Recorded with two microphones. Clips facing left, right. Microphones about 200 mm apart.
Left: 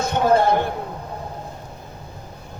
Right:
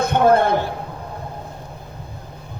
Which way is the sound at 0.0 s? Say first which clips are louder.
Right 2 dB; 55° right (ahead or behind).